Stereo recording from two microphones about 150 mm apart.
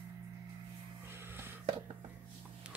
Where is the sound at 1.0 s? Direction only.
15° right (ahead or behind).